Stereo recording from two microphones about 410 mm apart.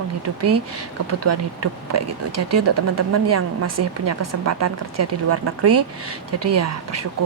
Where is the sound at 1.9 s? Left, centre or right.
Right.